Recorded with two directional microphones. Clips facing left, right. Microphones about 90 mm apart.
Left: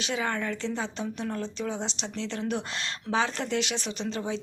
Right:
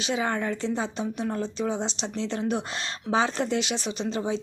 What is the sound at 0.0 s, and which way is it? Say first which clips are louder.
Speech: right 3 dB; 20° right (ahead or behind).